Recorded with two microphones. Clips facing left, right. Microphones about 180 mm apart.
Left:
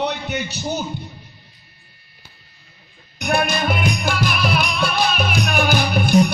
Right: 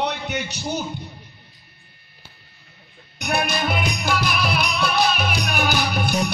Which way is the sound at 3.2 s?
50° left (ahead or behind).